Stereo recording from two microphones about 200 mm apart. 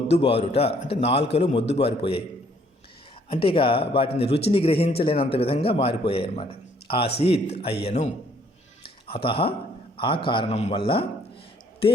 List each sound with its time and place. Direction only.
0.1 s a man's voice: 30° left (ahead or behind)
3.3 s a man's voice: 25° left (ahead or behind)
4.3 s a man's voice: 55° left (ahead or behind)
4.5 s a man's voice: 30° left (ahead or behind)
8.8 s a sound: 25° left (ahead or behind)
10.0 s a man's voice: 25° left (ahead or behind)